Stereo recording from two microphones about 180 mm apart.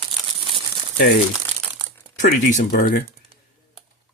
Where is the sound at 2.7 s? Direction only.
55° left (ahead or behind).